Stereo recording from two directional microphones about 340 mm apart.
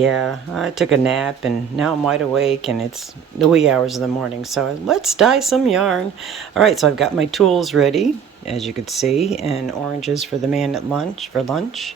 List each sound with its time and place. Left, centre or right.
0.0 s speech: centre
9.3 s speech: centre
10.2 s speech: centre